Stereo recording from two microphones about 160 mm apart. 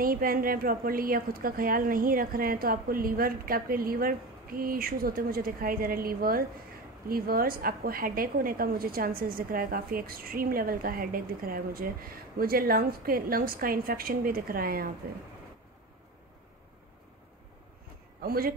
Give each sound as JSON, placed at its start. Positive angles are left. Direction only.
{"t": 0.0, "sound": "a woman's voice", "side_deg": -60}
{"t": 18.2, "sound": "speech", "side_deg": -70}